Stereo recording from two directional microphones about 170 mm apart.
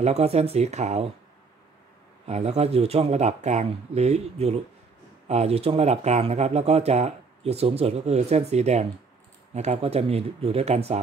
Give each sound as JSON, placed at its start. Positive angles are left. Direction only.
{"t": 0.0, "sound": "speech", "side_deg": -40}
{"t": 2.2, "sound": "speech", "side_deg": -40}